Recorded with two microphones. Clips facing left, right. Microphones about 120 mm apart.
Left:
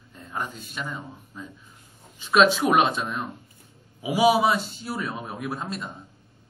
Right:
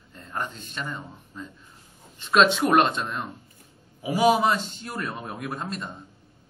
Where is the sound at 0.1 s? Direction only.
5° left (ahead or behind).